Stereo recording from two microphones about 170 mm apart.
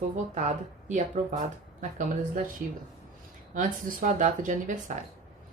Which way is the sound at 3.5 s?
50° right (ahead or behind).